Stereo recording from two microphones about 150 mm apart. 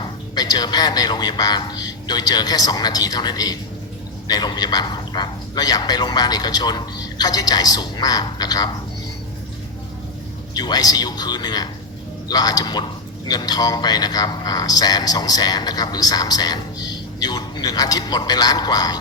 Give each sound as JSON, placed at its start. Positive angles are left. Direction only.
{"t": 0.0, "sound": "speech", "side_deg": 25}
{"t": 10.5, "sound": "speech", "side_deg": 25}